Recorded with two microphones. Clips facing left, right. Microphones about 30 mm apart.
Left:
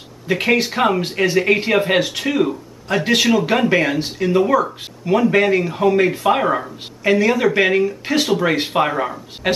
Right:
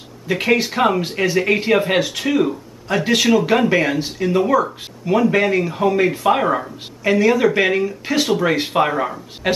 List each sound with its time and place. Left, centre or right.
0.3 s speech: centre